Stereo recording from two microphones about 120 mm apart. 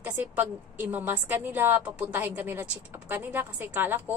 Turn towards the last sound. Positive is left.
turn(degrees=-15)  # may be behind; listen again after turning